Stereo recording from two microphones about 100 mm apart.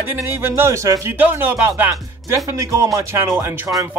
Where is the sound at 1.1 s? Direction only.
15° right (ahead or behind).